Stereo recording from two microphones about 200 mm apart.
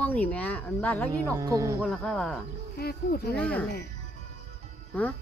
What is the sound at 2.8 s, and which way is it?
Speech, 50° left (ahead or behind).